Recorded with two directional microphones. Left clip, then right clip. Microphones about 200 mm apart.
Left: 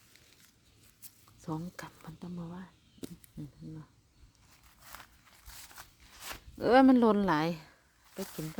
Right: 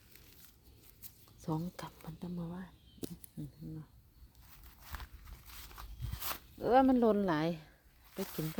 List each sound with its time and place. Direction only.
1.0 s speech: 5° right (ahead or behind)
4.8 s walk: 5° left (ahead or behind)
6.1 s a sound: 20° right (ahead or behind)
6.6 s speech: 30° left (ahead or behind)
8.1 s speech: centre (ahead or behind)